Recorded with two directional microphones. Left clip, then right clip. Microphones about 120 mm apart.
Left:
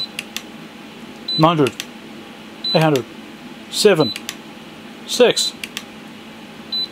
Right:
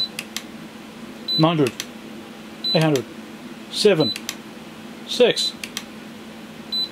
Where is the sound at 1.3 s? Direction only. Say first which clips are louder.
Left 4 dB; 25° left (ahead or behind).